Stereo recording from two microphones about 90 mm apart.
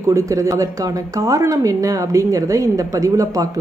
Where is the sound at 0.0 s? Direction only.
35° right (ahead or behind).